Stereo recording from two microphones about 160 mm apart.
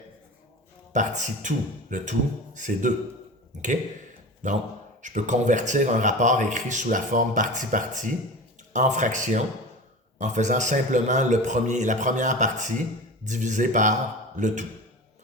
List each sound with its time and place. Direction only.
0.9 s speech: 50° right (ahead or behind)
4.4 s speech: 50° right (ahead or behind)